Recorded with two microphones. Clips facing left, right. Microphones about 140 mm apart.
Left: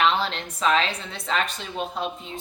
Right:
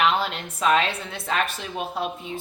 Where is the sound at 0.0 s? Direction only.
5° right (ahead or behind).